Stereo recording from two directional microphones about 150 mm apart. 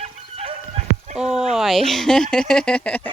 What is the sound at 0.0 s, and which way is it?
Dog, 45° right (ahead or behind).